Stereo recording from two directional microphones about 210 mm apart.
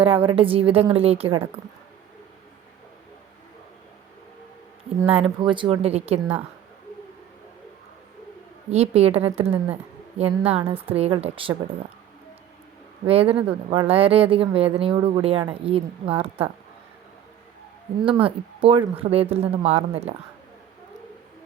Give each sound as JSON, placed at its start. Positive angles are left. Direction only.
{"t": 0.0, "sound": "speech", "side_deg": -25}
{"t": 5.0, "sound": "speech", "side_deg": -25}
{"t": 8.7, "sound": "speech", "side_deg": -30}
{"t": 13.1, "sound": "speech", "side_deg": -30}
{"t": 18.2, "sound": "speech", "side_deg": -25}